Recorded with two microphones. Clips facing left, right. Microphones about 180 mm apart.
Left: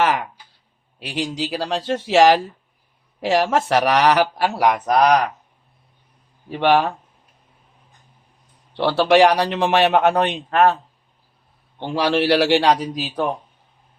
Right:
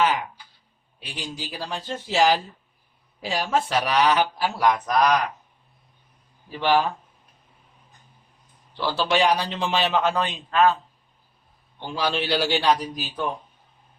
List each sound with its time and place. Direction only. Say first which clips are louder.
0.0 s a sound: left 3 dB; 70° left (ahead or behind)
1.0 s speech: left 10 dB; 85° left
5.0 s speech: left 5 dB; 40° left (ahead or behind)
6.5 s a man's voice: left 4 dB; 65° left (ahead or behind)
8.7 s a man's voice: left 8 dB; 70° left (ahead or behind)
11.8 s a man's voice: left 7 dB; 75° left (ahead or behind)